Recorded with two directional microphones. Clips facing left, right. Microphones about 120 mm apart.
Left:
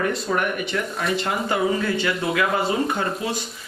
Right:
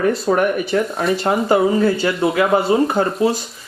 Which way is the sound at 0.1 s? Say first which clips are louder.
Right 7 dB; 35° right (ahead or behind).